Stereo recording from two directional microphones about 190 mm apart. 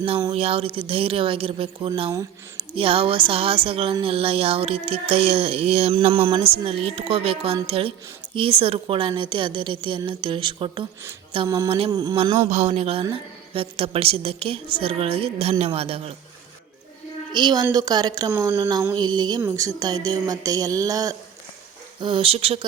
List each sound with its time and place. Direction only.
0.0 s a woman's voice: 25° right (ahead or behind)
17.3 s a woman's voice: 20° right (ahead or behind)